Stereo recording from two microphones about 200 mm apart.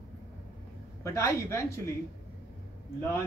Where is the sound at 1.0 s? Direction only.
15° left (ahead or behind).